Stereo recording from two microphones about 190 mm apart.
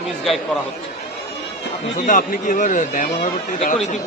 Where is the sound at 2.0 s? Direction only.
45° left (ahead or behind).